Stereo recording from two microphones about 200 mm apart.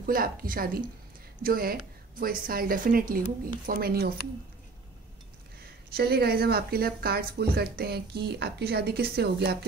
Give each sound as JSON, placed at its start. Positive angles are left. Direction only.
{"t": 0.0, "sound": "speech", "side_deg": -45}
{"t": 5.9, "sound": "speech", "side_deg": -50}